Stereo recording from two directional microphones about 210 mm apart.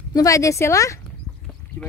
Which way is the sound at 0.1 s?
15° left (ahead or behind).